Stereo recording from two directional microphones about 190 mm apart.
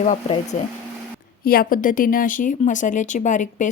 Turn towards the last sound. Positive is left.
turn(degrees=40)  # may be behind; listen again after turning